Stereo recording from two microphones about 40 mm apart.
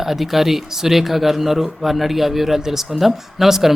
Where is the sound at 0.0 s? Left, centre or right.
Centre.